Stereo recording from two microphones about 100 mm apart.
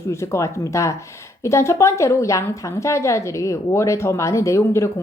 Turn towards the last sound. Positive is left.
turn(degrees=30)  # may be behind; listen again after turning